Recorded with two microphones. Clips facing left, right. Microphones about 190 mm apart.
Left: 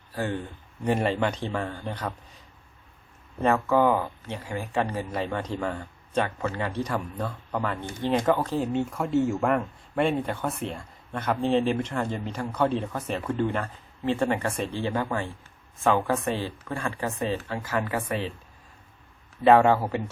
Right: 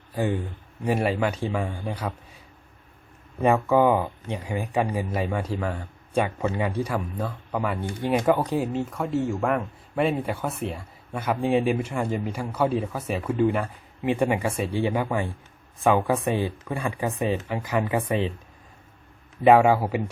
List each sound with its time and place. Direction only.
0.1 s speech: 15° right (ahead or behind)
3.4 s speech: 15° right (ahead or behind)
8.6 s speech: centre (ahead or behind); by 18.3 s 20° right (ahead or behind)
19.5 s speech: 10° right (ahead or behind)